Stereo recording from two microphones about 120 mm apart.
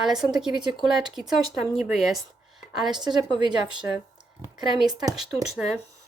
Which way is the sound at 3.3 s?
40° right (ahead or behind).